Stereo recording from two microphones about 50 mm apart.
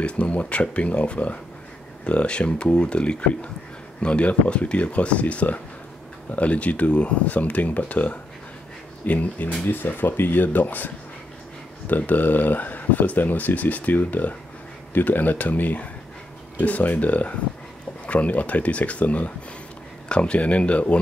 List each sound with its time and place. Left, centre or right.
0.0 s speech: left
11.9 s speech: left